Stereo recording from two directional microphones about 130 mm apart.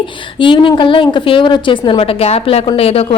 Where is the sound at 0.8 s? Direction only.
40° left (ahead or behind).